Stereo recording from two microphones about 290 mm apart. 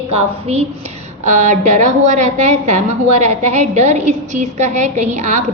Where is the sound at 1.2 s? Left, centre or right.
Right.